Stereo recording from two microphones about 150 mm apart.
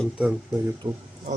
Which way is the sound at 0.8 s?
30° right (ahead or behind).